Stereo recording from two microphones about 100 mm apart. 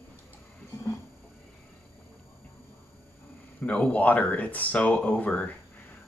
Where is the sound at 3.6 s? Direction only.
15° left (ahead or behind).